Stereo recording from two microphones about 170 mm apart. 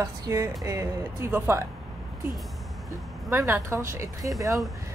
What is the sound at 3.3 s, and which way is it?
Speech, 15° right (ahead or behind).